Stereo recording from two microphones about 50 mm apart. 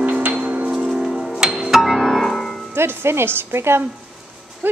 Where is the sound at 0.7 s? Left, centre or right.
Centre.